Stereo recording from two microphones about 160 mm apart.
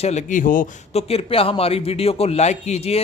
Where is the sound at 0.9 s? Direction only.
40° left (ahead or behind).